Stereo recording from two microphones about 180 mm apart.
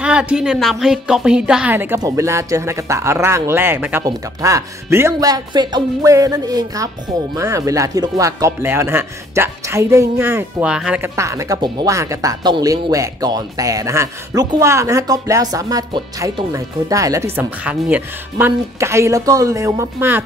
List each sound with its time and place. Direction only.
0.0 s speech: 5° right (ahead or behind)
11.1 s speech: 15° right (ahead or behind)